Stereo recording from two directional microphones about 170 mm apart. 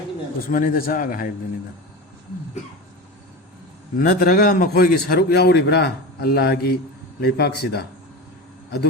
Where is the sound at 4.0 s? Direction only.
60° left (ahead or behind).